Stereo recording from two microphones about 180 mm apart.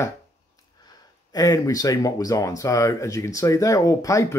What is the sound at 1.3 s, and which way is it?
Speech, 20° left (ahead or behind).